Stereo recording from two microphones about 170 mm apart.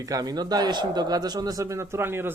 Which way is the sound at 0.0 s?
20° right (ahead or behind).